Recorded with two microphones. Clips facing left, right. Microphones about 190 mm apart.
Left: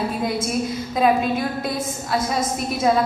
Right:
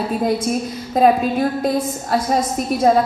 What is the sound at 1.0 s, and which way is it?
A woman's voice, 40° right (ahead or behind).